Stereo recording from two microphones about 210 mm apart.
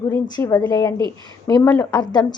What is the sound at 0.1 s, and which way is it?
A woman's voice, 20° left (ahead or behind).